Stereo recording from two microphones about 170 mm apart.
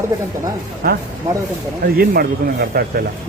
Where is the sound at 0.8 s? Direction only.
60° right (ahead or behind).